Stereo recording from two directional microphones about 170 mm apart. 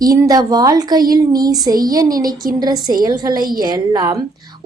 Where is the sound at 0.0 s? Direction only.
20° right (ahead or behind).